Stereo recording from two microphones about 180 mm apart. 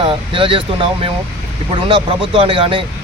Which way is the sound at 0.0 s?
30° right (ahead or behind).